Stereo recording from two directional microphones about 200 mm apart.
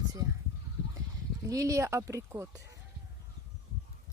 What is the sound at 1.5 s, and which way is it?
Speech, 15° right (ahead or behind).